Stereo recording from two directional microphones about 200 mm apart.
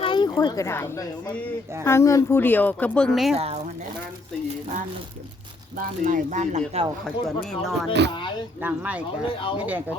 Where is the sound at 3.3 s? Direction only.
30° right (ahead or behind).